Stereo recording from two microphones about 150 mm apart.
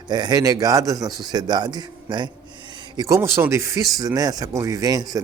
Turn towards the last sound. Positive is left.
turn(degrees=-20)  # may be behind; listen again after turning